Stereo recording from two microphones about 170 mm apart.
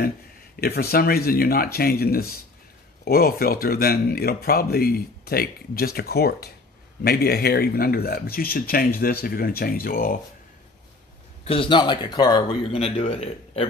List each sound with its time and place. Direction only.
0.6 s speech: 65° left (ahead or behind)
11.4 s a man's voice: 30° left (ahead or behind)